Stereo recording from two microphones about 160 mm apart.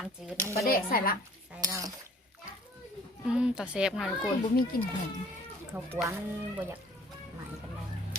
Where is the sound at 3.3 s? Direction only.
5° right (ahead or behind).